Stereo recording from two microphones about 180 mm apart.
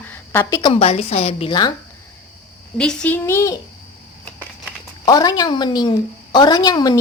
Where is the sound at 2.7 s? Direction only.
5° left (ahead or behind).